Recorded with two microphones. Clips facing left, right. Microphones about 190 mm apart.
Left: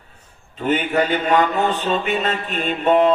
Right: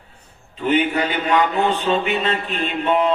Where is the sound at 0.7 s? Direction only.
45° left (ahead or behind).